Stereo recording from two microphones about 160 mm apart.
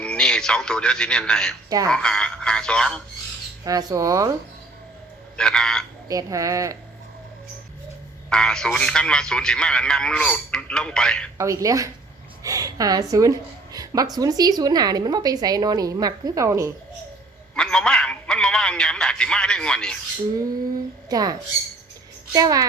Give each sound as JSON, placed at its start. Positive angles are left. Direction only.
{"t": 0.0, "sound": "a man's voice", "side_deg": 5}
{"t": 3.6, "sound": "a woman's voice", "side_deg": -25}
{"t": 5.4, "sound": "a man's voice", "side_deg": 5}
{"t": 6.1, "sound": "a woman's voice", "side_deg": -20}
{"t": 8.3, "sound": "a man's voice", "side_deg": 5}
{"t": 11.3, "sound": "a woman's voice", "side_deg": -20}
{"t": 17.5, "sound": "a man's voice", "side_deg": 5}
{"t": 21.1, "sound": "a woman's voice", "side_deg": -25}
{"t": 22.4, "sound": "a woman's voice", "side_deg": -20}